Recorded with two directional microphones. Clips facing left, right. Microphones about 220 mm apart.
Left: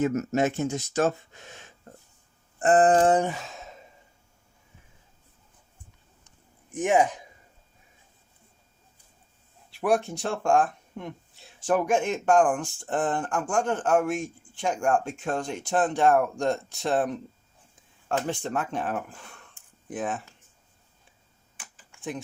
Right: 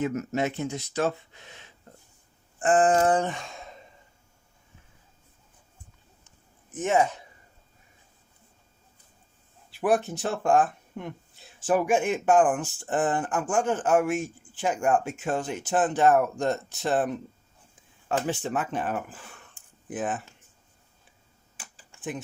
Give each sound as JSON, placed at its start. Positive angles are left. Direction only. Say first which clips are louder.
{"t": 0.0, "sound": "speech", "louder": "left 3 dB", "side_deg": 45}
{"t": 2.6, "sound": "a sound", "louder": "left 2 dB", "side_deg": 35}
{"t": 3.2, "sound": "a sound", "louder": "left 2 dB", "side_deg": 5}
{"t": 6.7, "sound": "speech", "louder": "left 1 dB", "side_deg": 15}
{"t": 9.7, "sound": "speech", "louder": "even", "side_deg": 0}
{"t": 18.3, "sound": "speech", "louder": "right 1 dB", "side_deg": -5}
{"t": 21.9, "sound": "typing", "louder": "right 1 dB", "side_deg": -30}